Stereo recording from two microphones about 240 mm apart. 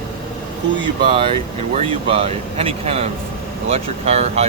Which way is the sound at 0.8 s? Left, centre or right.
Right.